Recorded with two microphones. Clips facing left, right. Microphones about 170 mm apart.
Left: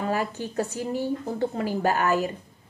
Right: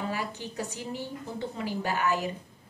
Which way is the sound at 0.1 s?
45° left (ahead or behind).